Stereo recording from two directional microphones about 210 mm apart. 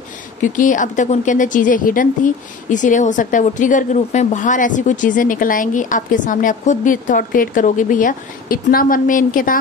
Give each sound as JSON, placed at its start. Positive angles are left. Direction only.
{"t": 0.4, "sound": "a woman's voice", "side_deg": 40}